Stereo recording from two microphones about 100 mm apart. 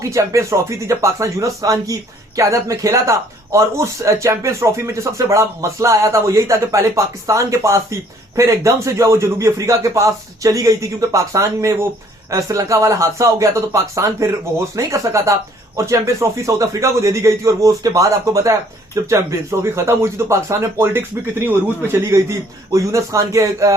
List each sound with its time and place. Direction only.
0.0 s speech: 30° right (ahead or behind)